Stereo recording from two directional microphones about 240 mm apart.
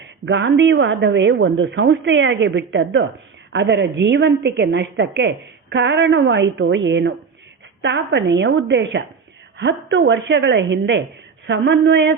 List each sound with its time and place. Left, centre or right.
0.3 s a woman's voice: right